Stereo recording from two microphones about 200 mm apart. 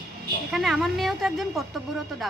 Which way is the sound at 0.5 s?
Centre (ahead or behind).